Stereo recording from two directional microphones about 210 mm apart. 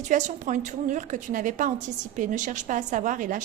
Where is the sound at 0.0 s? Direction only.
35° right (ahead or behind).